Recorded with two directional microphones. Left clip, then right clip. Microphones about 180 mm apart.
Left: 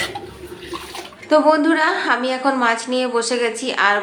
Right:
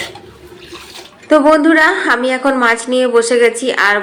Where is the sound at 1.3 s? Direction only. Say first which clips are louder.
Right 5 dB; 20° right (ahead or behind).